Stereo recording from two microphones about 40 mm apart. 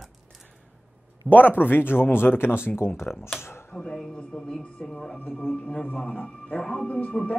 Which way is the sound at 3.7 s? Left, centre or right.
Centre.